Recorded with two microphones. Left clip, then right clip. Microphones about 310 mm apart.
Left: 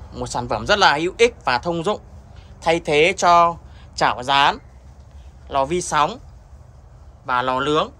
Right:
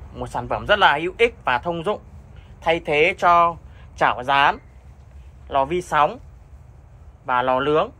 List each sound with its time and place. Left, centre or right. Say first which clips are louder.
0.2 s speech: left 2 dB; centre
7.2 s speech: even; centre